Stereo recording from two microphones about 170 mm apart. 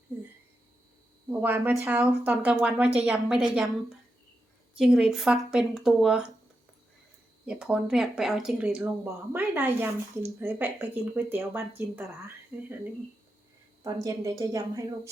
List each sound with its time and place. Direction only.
1.3 s speech: 10° right (ahead or behind)
4.7 s speech: 5° right (ahead or behind)
7.4 s speech: 5° right (ahead or behind)
13.8 s speech: 20° right (ahead or behind)